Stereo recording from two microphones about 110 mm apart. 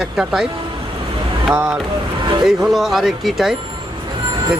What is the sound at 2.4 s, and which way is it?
Speech, centre (ahead or behind).